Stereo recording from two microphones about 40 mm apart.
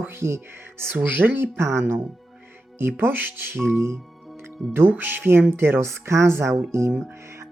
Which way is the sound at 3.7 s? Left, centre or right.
Right.